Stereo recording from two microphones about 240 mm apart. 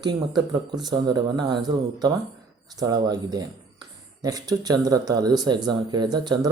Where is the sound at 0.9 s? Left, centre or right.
Centre.